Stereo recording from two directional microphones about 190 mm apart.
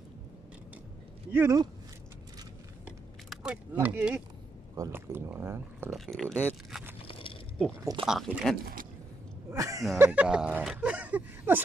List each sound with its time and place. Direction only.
1.3 s speech: 15° right (ahead or behind)
3.3 s speech: 5° right (ahead or behind)
5.9 s speech: centre (ahead or behind)
7.1 s a sound: 30° left (ahead or behind)
8.0 s speech: centre (ahead or behind)
9.5 s speech: 15° right (ahead or behind)